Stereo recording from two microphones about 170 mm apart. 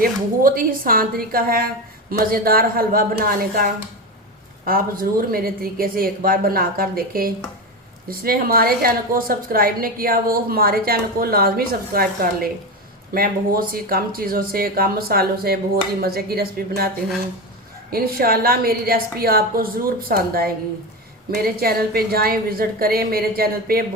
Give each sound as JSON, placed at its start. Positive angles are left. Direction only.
{"t": 0.0, "sound": "a woman's voice", "side_deg": -55}
{"t": 17.9, "sound": "a woman's voice", "side_deg": -60}